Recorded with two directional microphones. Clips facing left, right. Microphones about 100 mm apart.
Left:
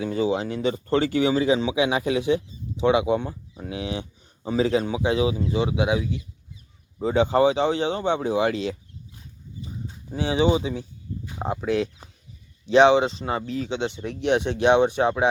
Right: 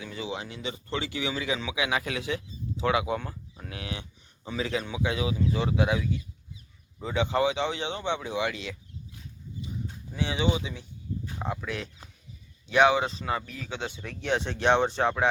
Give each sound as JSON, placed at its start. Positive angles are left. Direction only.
{"t": 0.0, "sound": "speech", "side_deg": 40}
{"t": 4.4, "sound": "speech", "side_deg": 35}
{"t": 7.0, "sound": "speech", "side_deg": 35}
{"t": 10.1, "sound": "speech", "side_deg": 35}